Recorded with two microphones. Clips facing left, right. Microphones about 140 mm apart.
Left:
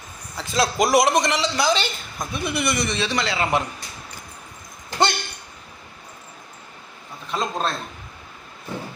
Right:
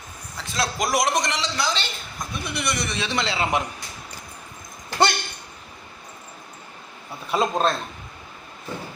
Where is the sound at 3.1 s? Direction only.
25° right (ahead or behind).